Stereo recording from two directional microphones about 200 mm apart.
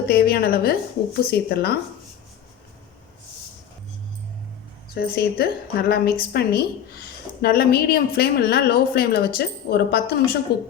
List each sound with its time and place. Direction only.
0.0 s a woman's voice: 50° left (ahead or behind)
4.9 s a woman's voice: 50° left (ahead or behind)
10.5 s a woman's voice: 20° left (ahead or behind)